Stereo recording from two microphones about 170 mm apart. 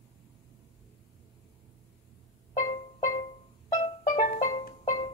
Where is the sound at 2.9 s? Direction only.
40° left (ahead or behind).